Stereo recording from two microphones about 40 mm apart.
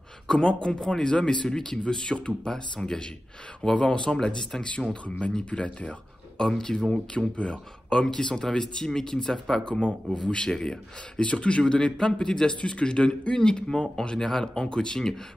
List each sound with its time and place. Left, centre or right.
0.3 s speech: left
5.4 s speech: left
12.5 s speech: left